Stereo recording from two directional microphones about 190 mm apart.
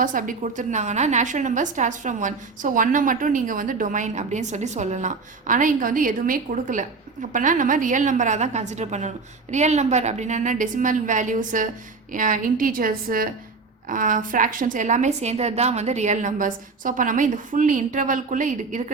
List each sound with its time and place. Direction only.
0.0 s a woman's voice: 45° right (ahead or behind)